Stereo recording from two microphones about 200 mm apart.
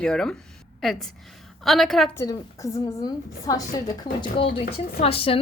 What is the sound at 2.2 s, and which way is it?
Speech, 15° left (ahead or behind).